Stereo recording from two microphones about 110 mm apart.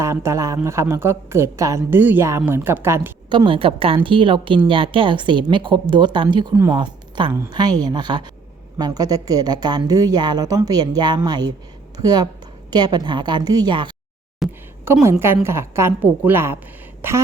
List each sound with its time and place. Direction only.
0.0 s a woman's voice: 25° right (ahead or behind)
3.2 s a woman's voice: 45° right (ahead or behind)
14.4 s a sound: 5° right (ahead or behind)
14.9 s a woman's voice: 20° right (ahead or behind)